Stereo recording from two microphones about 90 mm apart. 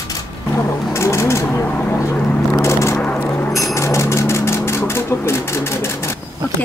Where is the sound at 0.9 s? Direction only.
30° left (ahead or behind); by 2.4 s 15° left (ahead or behind).